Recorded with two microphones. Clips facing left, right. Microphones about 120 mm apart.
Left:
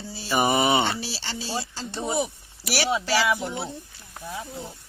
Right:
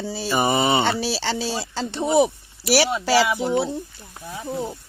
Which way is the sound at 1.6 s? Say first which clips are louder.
Right 6 dB; 70° right (ahead or behind).